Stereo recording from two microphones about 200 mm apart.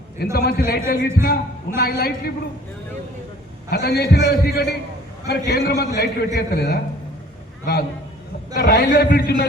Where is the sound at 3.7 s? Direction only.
50° left (ahead or behind).